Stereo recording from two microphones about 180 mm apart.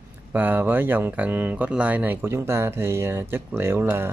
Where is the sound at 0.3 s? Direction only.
10° right (ahead or behind).